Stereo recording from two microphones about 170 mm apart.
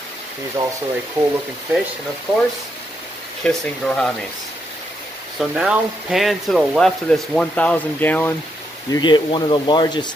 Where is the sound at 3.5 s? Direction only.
5° left (ahead or behind).